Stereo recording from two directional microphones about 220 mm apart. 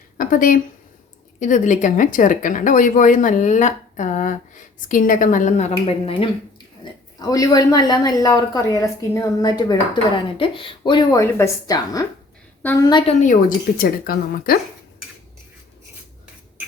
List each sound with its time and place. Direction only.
0.2 s a woman's voice: 40° left (ahead or behind)